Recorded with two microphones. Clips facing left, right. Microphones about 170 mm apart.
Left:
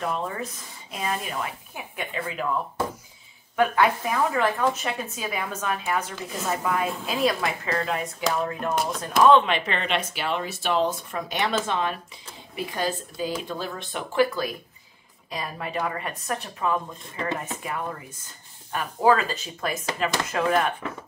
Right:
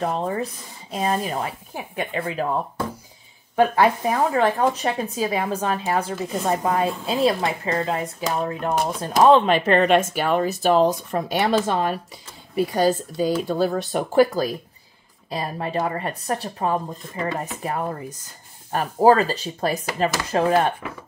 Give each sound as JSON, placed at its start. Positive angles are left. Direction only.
{"t": 0.0, "sound": "speech", "side_deg": -35}